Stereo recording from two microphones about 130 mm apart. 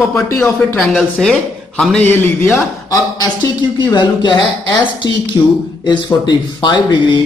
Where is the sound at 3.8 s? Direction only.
35° left (ahead or behind).